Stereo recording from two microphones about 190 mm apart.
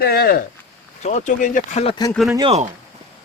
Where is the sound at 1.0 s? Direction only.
35° left (ahead or behind).